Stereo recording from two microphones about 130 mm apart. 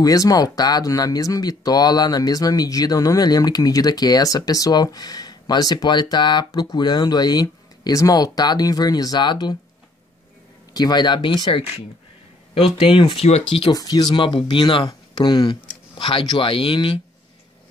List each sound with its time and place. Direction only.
0.0 s speech: 25° left (ahead or behind)
10.7 s speech: 30° left (ahead or behind)
12.7 s speech: 45° left (ahead or behind)
13.7 s speech: 30° left (ahead or behind)